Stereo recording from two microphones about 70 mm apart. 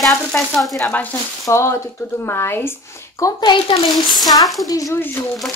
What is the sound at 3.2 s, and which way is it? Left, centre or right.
Speech, left.